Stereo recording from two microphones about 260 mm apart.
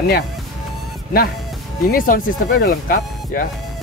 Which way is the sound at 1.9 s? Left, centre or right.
Left.